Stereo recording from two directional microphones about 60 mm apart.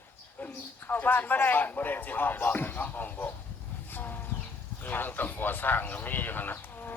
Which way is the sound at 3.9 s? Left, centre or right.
Left.